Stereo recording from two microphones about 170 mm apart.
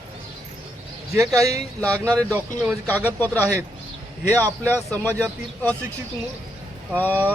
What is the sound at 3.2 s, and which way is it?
Speech, 10° left (ahead or behind).